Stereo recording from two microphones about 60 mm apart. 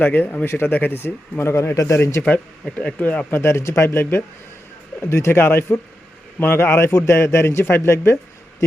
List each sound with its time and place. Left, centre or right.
0.0 s a man's voice: left
2.7 s speech: left
3.4 s a man's voice: left